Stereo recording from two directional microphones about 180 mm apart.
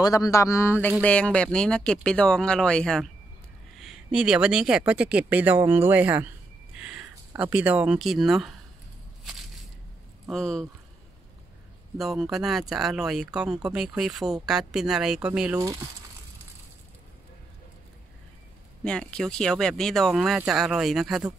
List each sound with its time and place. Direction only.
0.0 s speech: 20° left (ahead or behind); by 8.5 s centre (ahead or behind)
10.2 s speech: 5° left (ahead or behind)
12.0 s speech: centre (ahead or behind)
15.5 s speech: 20° right (ahead or behind)
18.9 s speech: 5° left (ahead or behind)